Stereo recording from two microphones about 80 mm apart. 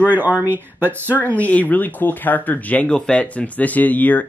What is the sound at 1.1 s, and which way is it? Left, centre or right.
Speech, centre.